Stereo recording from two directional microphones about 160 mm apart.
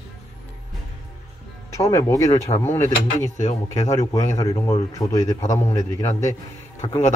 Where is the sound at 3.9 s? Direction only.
20° left (ahead or behind).